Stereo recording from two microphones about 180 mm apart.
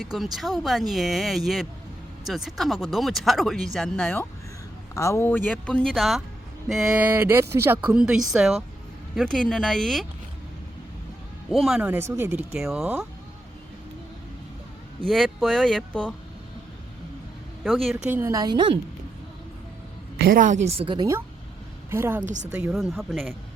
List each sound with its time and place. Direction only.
0.0 s speech: centre (ahead or behind)
11.5 s speech: centre (ahead or behind)
15.0 s speech: centre (ahead or behind)
17.6 s speech: centre (ahead or behind)
18.2 s a woman's voice: 20° right (ahead or behind)
20.2 s a woman's voice: 50° right (ahead or behind); by 21.2 s 25° right (ahead or behind)
21.8 s a woman's voice: 15° right (ahead or behind)
22.2 s a woman's voice: 40° right (ahead or behind)
22.7 s speech: centre (ahead or behind)